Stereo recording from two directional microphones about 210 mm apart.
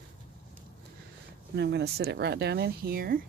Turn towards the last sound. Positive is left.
turn(degrees=-45)  # may be behind; listen again after turning